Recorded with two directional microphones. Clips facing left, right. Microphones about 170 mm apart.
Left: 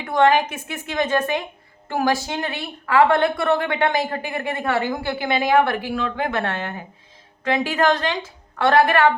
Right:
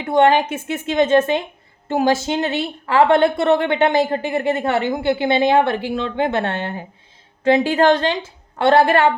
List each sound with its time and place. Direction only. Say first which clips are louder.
0.0 s a woman's voice: right 3 dB; 25° right (ahead or behind)